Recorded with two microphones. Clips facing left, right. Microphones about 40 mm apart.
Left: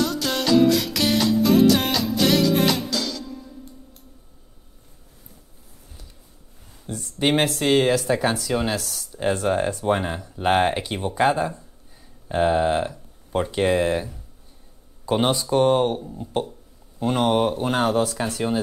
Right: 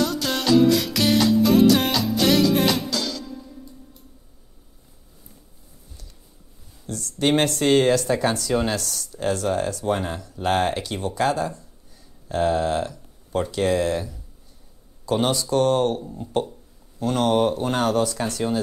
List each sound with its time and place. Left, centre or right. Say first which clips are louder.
0.0 s music: even; centre
6.9 s speech: right 1 dB; centre
7.4 s speech: right 1 dB; centre
9.1 s speech: left 1 dB; left
16.0 s speech: right 1 dB; centre
17.0 s speech: even; centre